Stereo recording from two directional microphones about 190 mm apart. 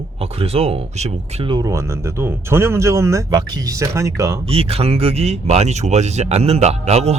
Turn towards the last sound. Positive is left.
turn(degrees=-35)  # may be behind; listen again after turning